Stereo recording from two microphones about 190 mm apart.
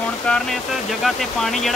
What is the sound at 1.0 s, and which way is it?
Speech, centre (ahead or behind).